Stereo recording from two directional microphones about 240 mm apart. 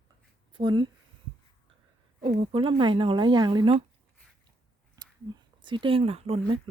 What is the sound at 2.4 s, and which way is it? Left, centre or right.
Speech, right.